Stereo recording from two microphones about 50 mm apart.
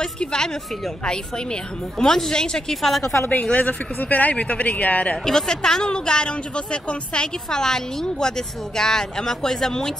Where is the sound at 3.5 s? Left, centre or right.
Left.